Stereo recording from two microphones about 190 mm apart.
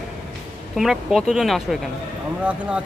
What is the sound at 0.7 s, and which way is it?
A man's voice, centre (ahead or behind).